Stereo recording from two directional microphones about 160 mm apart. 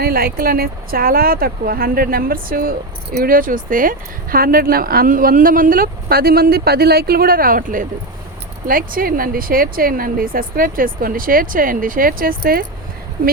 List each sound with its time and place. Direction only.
0.0 s speech: 65° right (ahead or behind)